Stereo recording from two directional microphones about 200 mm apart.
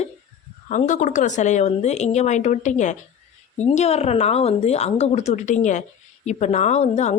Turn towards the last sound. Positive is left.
turn(degrees=35)  # may be behind; listen again after turning